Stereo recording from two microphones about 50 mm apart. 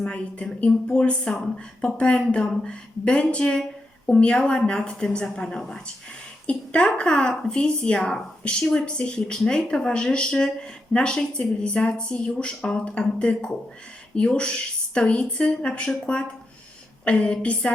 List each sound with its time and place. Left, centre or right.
0.0 s a woman's voice: left